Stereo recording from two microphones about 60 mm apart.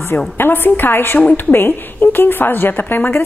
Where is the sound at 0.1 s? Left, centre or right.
Left.